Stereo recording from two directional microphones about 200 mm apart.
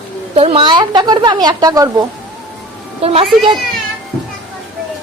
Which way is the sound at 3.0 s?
30° right (ahead or behind).